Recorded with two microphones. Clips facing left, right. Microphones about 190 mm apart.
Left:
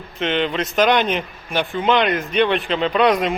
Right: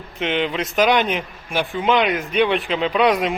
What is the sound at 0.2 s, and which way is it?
Speech, 10° right (ahead or behind).